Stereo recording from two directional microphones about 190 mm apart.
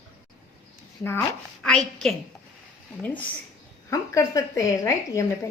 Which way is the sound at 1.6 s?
5° left (ahead or behind).